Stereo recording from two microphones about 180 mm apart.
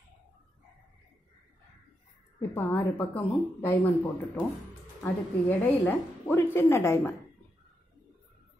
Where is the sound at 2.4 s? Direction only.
10° left (ahead or behind).